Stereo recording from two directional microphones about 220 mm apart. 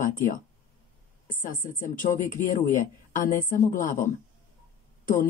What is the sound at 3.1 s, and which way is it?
Speech, 35° left (ahead or behind).